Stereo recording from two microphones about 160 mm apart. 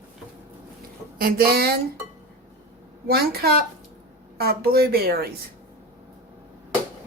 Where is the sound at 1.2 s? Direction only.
70° right (ahead or behind).